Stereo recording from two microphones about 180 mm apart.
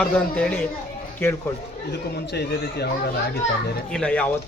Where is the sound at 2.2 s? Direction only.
65° left (ahead or behind).